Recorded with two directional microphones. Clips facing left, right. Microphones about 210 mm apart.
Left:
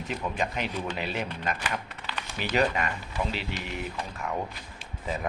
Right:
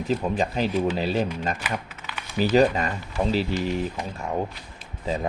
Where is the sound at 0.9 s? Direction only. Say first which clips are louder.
Right 8 dB; 35° right (ahead or behind).